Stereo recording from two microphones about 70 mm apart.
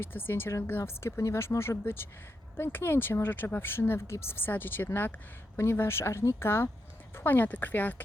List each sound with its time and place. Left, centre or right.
0.0 s speech: left